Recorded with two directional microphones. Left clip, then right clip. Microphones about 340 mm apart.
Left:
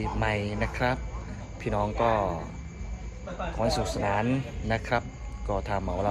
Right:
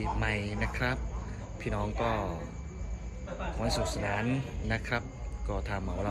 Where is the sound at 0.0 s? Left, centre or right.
Centre.